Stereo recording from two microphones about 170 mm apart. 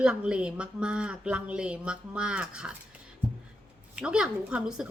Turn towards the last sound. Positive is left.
turn(degrees=-5)  # may be behind; listen again after turning